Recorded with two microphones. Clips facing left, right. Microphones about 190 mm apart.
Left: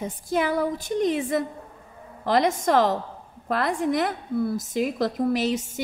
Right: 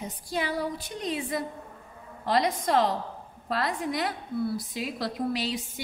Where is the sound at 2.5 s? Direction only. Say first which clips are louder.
Left 4 dB; 45° left (ahead or behind).